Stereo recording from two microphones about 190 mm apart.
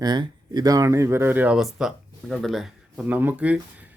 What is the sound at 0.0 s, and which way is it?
Speech, 20° right (ahead or behind).